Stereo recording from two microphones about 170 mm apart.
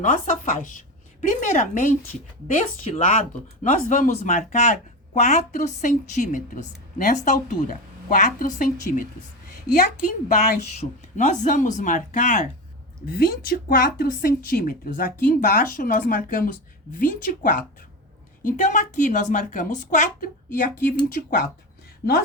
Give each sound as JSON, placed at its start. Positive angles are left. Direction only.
{"t": 0.0, "sound": "speech", "side_deg": 50}
{"t": 10.3, "sound": "speech", "side_deg": 40}
{"t": 13.1, "sound": "a woman's voice", "side_deg": 65}